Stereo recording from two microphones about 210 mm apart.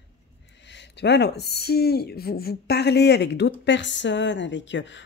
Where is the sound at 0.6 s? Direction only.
55° left (ahead or behind).